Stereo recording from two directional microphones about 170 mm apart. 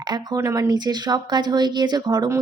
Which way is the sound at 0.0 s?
25° right (ahead or behind).